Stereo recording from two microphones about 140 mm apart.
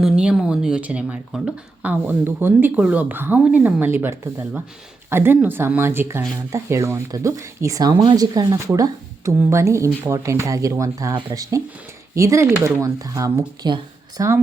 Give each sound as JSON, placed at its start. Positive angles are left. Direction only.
{"t": 0.0, "sound": "speech", "side_deg": -5}
{"t": 14.2, "sound": "speech", "side_deg": -20}